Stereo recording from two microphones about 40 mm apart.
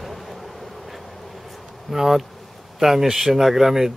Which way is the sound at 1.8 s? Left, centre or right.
Centre.